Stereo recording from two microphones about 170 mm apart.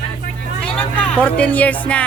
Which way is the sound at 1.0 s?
5° left (ahead or behind).